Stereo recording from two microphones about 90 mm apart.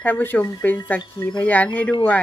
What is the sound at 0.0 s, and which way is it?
Speech, 20° left (ahead or behind).